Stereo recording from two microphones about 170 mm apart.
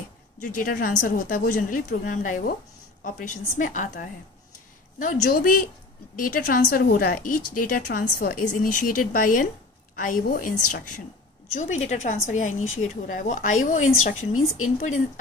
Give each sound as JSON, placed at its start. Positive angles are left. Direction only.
{"t": 0.4, "sound": "a woman's voice", "side_deg": 55}